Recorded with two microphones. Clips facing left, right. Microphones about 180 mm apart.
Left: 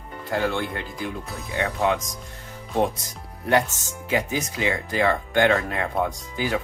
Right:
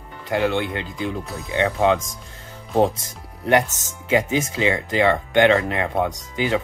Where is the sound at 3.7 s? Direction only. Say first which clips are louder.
Right 5 dB; 20° right (ahead or behind).